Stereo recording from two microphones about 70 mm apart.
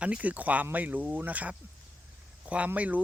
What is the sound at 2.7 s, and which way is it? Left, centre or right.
Speech, right.